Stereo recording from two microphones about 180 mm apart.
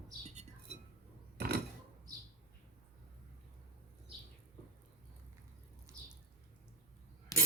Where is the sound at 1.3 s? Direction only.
65° right (ahead or behind).